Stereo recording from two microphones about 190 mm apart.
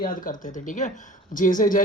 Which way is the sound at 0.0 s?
45° left (ahead or behind).